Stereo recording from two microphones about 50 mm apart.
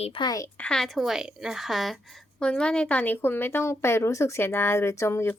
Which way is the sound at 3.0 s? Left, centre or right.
Left.